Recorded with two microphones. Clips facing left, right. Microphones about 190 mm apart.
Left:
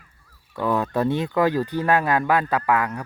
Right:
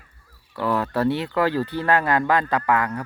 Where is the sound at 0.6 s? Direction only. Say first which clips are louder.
Even; 15° left (ahead or behind).